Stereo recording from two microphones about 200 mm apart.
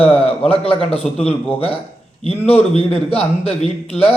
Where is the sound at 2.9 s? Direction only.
30° left (ahead or behind).